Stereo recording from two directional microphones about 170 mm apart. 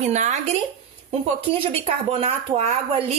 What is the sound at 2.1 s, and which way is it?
Speech, 35° right (ahead or behind).